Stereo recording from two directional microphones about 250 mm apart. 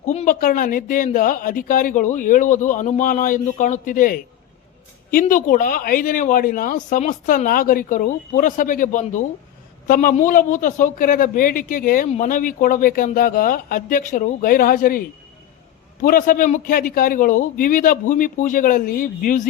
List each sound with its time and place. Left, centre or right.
0.0 s a man's voice: left
16.0 s a man's voice: left